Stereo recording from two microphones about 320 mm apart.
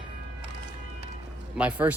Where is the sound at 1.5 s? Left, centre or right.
Centre.